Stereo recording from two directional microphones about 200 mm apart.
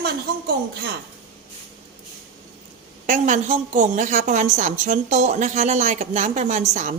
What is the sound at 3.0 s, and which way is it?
A woman's voice, 40° right (ahead or behind).